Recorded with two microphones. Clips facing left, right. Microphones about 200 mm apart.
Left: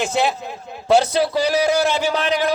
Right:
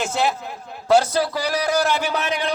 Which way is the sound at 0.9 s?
25° left (ahead or behind).